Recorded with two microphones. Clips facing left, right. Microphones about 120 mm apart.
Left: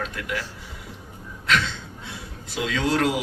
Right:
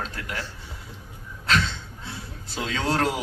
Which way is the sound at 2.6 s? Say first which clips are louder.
Left 2 dB; 30° right (ahead or behind).